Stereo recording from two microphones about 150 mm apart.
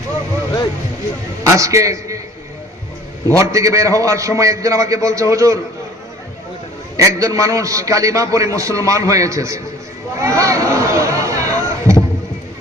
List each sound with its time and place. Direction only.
1.5 s a man's voice: 20° right (ahead or behind)
3.3 s a man's voice: 20° right (ahead or behind)
6.9 s a man's voice: 20° right (ahead or behind)
10.2 s a sound: 20° right (ahead or behind)